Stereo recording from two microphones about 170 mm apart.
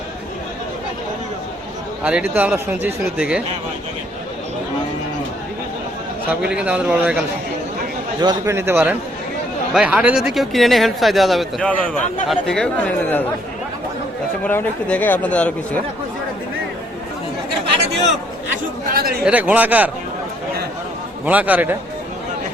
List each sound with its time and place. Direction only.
2.0 s speech: 10° right (ahead or behind)
6.4 s speech: 5° right (ahead or behind)
8.2 s speech: 20° right (ahead or behind); by 13.2 s 10° left (ahead or behind)
14.4 s speech: 10° left (ahead or behind)
18.9 s a man's voice: 60° right (ahead or behind)
19.2 s speech: 10° right (ahead or behind)
21.2 s speech: 10° right (ahead or behind)